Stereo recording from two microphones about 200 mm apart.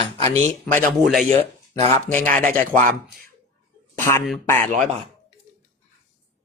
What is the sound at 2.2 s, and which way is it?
Speech, 10° left (ahead or behind).